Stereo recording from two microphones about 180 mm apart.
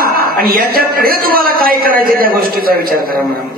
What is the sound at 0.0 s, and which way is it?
A man's voice, 55° right (ahead or behind).